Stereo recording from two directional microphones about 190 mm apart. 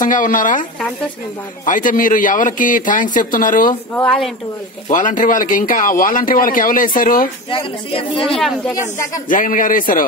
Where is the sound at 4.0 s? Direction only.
5° left (ahead or behind).